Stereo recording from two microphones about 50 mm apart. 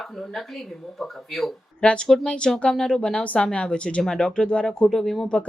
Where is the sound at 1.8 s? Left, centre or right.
Centre.